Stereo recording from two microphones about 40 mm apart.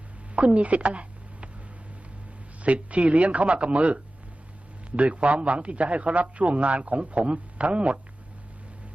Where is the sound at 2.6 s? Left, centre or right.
Right.